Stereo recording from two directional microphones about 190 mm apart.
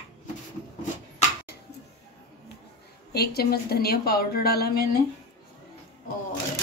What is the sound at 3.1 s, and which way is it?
A woman's voice, 55° left (ahead or behind).